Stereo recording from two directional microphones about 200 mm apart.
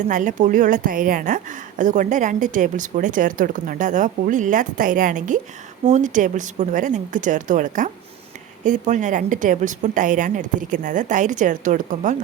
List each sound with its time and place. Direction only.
0.1 s a woman's voice: 40° right (ahead or behind)